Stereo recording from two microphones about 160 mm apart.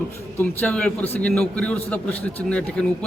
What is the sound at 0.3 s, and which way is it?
A man's voice, 10° left (ahead or behind).